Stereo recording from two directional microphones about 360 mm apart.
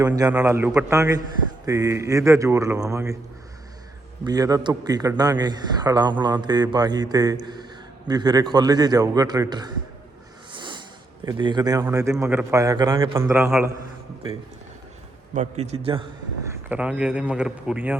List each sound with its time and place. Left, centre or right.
0.0 s a man's voice: centre
4.2 s a man's voice: centre
10.5 s a sound: centre
11.3 s a man's voice: centre
15.4 s a man's voice: centre
16.5 s a man's voice: centre